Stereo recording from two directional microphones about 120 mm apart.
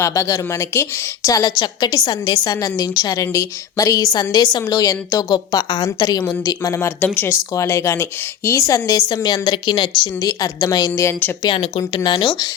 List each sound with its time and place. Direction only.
0.0 s a woman's voice: 25° left (ahead or behind)
6.7 s a woman's voice: 20° left (ahead or behind); by 10.1 s 40° left (ahead or behind)
10.2 s a woman's voice: 30° left (ahead or behind)
11.4 s a woman's voice: 50° left (ahead or behind)